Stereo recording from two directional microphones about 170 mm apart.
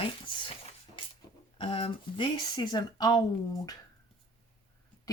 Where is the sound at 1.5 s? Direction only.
30° left (ahead or behind).